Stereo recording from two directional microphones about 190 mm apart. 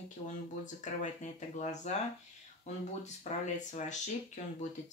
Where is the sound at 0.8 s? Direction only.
40° left (ahead or behind).